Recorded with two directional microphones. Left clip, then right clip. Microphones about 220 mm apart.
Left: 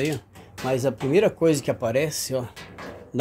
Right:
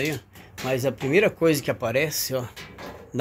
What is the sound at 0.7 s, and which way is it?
Speech, 20° left (ahead or behind).